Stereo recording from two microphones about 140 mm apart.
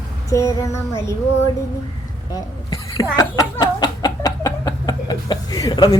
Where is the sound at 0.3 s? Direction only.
20° left (ahead or behind).